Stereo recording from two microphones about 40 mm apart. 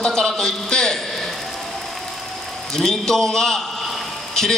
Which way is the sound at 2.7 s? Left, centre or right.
Centre.